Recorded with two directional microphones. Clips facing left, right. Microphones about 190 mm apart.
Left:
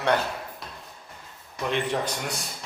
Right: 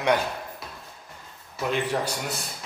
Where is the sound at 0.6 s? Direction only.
Centre (ahead or behind).